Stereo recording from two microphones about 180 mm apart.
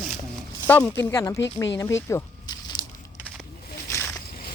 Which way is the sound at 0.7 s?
10° left (ahead or behind).